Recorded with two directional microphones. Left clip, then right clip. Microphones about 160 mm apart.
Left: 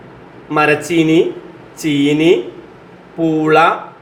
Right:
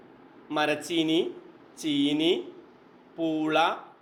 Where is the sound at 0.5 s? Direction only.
30° right (ahead or behind).